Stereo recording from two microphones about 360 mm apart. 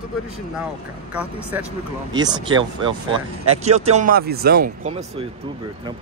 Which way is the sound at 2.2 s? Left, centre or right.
Centre.